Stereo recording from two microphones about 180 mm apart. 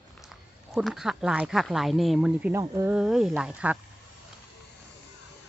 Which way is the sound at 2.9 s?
5° right (ahead or behind).